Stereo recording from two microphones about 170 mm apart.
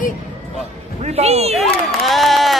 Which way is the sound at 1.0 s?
40° right (ahead or behind).